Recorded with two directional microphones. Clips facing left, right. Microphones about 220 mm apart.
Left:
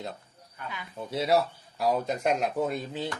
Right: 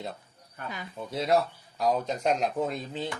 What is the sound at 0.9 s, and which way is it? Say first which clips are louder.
Speech: left 1 dB; centre (ahead or behind).